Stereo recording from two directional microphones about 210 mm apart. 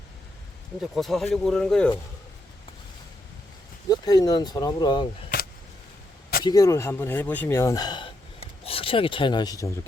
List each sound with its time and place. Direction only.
0.8 s speech: centre (ahead or behind)
3.8 s speech: 20° left (ahead or behind)
6.4 s speech: 15° left (ahead or behind)